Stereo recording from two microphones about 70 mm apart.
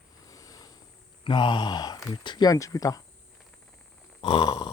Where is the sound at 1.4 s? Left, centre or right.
Left.